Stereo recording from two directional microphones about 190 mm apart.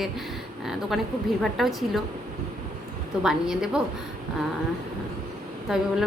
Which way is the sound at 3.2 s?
5° right (ahead or behind).